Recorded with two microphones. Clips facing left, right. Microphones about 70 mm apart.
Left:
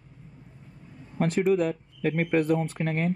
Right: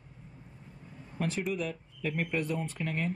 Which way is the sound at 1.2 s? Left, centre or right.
Left.